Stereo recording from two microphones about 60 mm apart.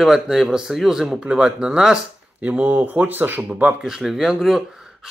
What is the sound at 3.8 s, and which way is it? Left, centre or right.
Speech, centre.